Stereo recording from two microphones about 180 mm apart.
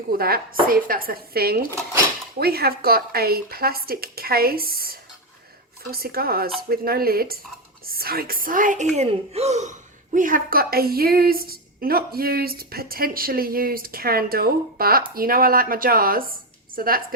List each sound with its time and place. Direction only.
0.2 s a woman's voice: 55° right (ahead or behind); by 9.7 s 40° right (ahead or behind)
10.2 s a woman's voice: 50° right (ahead or behind)